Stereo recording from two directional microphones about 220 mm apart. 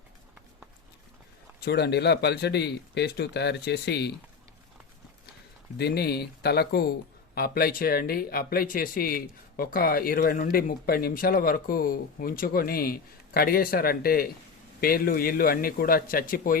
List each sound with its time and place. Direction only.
1.6 s speech: 50° left (ahead or behind)
5.7 s speech: 45° left (ahead or behind)